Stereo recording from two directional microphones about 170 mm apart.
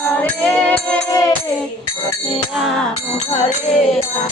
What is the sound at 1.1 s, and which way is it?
Music, 20° left (ahead or behind).